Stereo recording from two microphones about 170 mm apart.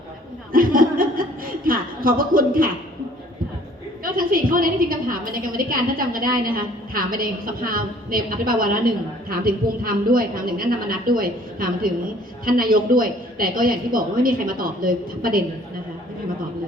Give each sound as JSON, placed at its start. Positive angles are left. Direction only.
{"t": 0.5, "sound": "chuckle", "side_deg": -55}
{"t": 1.6, "sound": "a woman's voice", "side_deg": -55}
{"t": 4.0, "sound": "a woman's voice", "side_deg": -55}